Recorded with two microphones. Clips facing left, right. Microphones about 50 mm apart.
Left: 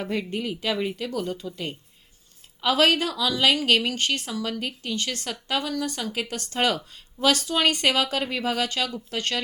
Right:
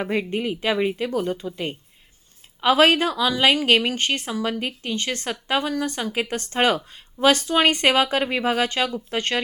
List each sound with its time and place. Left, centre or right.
0.0 s a woman's voice: right